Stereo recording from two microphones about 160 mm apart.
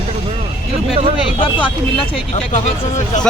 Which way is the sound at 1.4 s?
30° left (ahead or behind).